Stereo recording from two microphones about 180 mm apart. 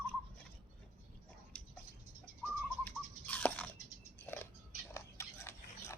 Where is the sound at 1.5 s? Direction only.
5° left (ahead or behind).